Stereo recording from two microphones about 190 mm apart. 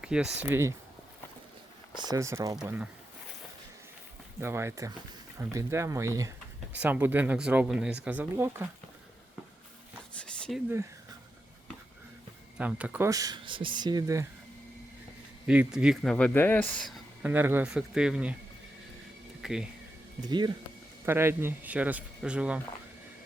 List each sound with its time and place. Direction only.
0.0 s speech: 5° right (ahead or behind)
2.0 s speech: 15° right (ahead or behind)
4.4 s speech: 15° right (ahead or behind)
10.2 s a sound: 5° left (ahead or behind)
12.5 s speech: 5° right (ahead or behind)
15.4 s speech: 5° right (ahead or behind)
17.2 s speech: 10° right (ahead or behind)
19.4 s a sound: 5° right (ahead or behind)
20.2 s speech: 25° right (ahead or behind)
21.0 s speech: 10° right (ahead or behind)